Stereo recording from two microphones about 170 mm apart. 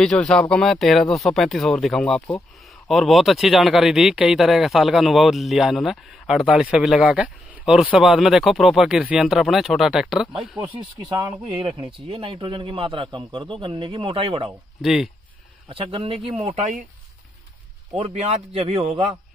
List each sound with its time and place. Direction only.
0.0 s speech: 5° left (ahead or behind)
10.8 s a man's voice: 20° right (ahead or behind)
14.8 s speech: centre (ahead or behind)
15.7 s speech: 30° right (ahead or behind)
17.9 s speech: 40° right (ahead or behind)